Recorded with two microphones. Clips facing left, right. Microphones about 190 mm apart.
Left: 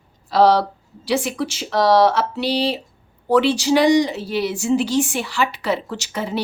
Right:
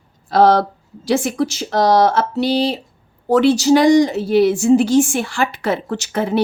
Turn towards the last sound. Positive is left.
turn(degrees=-55)  # may be behind; listen again after turning